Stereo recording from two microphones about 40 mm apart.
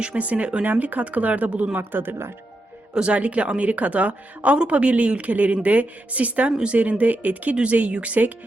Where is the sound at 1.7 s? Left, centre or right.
Right.